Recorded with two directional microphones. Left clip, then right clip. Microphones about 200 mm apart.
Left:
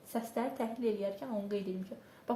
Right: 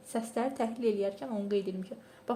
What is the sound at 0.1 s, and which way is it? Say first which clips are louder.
A woman's voice: right 3 dB; 40° right (ahead or behind).